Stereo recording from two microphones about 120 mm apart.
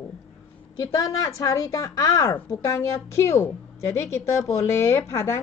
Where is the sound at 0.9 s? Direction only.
30° left (ahead or behind).